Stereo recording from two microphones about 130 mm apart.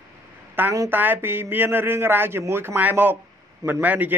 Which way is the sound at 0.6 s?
15° right (ahead or behind).